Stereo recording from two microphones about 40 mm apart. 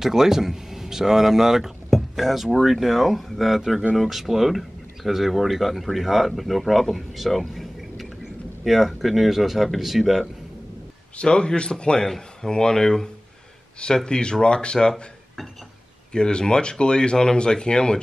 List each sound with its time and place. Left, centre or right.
0.0 s speech: centre
11.1 s speech: left
16.1 s speech: left